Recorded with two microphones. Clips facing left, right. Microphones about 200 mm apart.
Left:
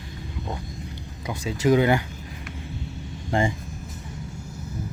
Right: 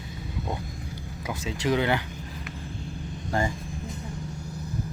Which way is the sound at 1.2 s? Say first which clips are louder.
Left 3 dB; centre (ahead or behind).